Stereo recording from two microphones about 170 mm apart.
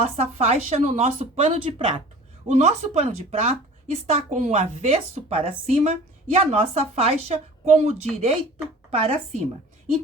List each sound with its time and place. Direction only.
0.0 s speech: 40° right (ahead or behind)